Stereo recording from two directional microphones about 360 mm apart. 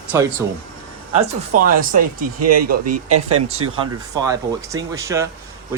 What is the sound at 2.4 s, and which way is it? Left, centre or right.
Speech, right.